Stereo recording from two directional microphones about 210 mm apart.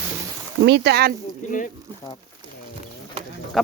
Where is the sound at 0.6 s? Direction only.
55° right (ahead or behind).